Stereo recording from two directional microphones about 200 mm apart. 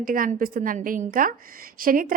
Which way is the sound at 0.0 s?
45° right (ahead or behind).